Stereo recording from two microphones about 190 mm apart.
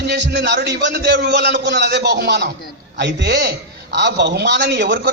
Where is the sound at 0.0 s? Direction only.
60° right (ahead or behind).